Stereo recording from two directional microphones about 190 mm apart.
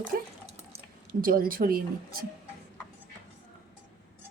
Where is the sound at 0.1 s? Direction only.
55° right (ahead or behind).